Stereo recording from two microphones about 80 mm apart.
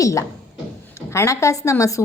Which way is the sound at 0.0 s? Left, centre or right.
Left.